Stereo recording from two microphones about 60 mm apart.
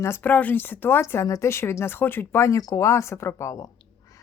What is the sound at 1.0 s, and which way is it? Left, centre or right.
Speech, left.